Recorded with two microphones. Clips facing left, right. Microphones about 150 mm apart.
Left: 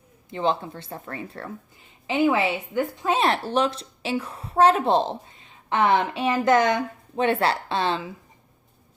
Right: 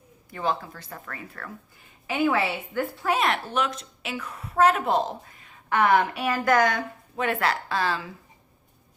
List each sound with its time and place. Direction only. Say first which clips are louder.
0.3 s a woman's voice: left 4 dB; 25° left (ahead or behind)